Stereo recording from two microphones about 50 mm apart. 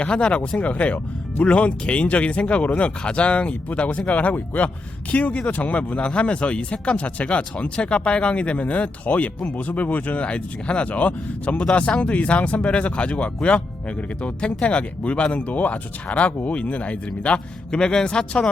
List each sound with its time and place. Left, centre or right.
0.0 s speech: left
1.5 s a man's voice: left